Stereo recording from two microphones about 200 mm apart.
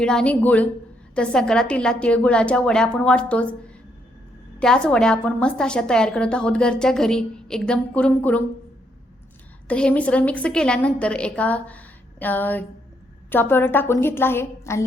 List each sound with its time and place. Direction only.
0.0 s a woman's voice: 5° left (ahead or behind)
4.6 s a woman's voice: 5° left (ahead or behind)
9.6 s a woman's voice: 5° left (ahead or behind)